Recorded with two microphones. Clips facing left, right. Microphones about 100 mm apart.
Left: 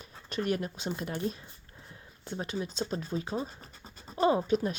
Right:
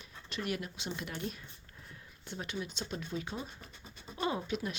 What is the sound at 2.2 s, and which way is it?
Speech, 35° left (ahead or behind).